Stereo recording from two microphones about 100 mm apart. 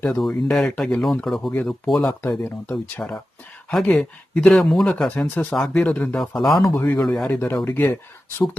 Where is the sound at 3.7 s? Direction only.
5° left (ahead or behind).